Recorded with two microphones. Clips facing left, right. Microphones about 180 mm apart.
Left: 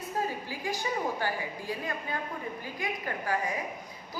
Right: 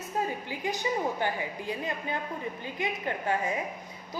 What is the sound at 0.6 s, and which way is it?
A woman's voice, 20° right (ahead or behind).